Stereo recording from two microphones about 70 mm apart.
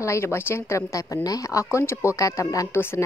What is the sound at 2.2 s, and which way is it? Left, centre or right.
Speech, left.